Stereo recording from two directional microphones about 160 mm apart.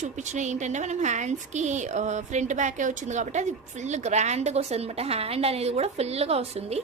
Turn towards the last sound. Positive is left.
turn(degrees=-40)  # may be behind; listen again after turning